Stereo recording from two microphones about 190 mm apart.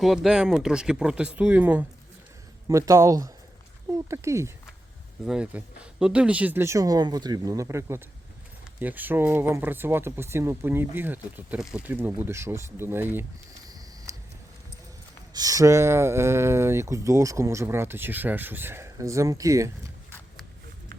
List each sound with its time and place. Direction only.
0.0 s speech: centre (ahead or behind)
5.2 s speech: 5° right (ahead or behind)
14.1 s a sound: 15° right (ahead or behind)
15.3 s speech: 20° right (ahead or behind)